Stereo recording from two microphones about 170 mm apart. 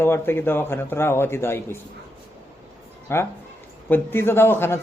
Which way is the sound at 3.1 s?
15° left (ahead or behind).